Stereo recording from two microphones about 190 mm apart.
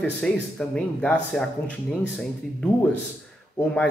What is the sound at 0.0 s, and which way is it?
A man's voice, 5° left (ahead or behind).